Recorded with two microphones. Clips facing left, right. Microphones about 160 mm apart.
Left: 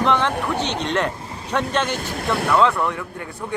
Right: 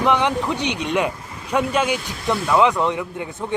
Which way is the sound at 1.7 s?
10° right (ahead or behind).